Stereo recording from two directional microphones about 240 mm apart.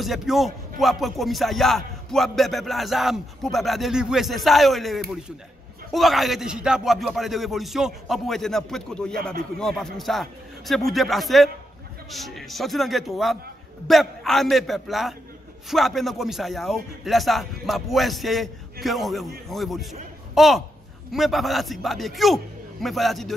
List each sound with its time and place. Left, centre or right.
0.0 s music: centre